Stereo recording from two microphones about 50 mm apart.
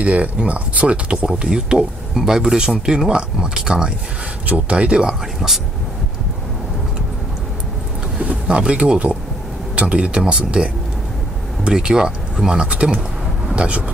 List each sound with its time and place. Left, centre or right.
0.0 s speech: right
1.2 s speech: centre
4.5 s speech: right
8.2 s speech: right
13.6 s speech: right